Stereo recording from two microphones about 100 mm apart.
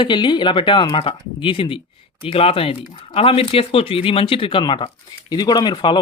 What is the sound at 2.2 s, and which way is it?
Speech, 70° left (ahead or behind).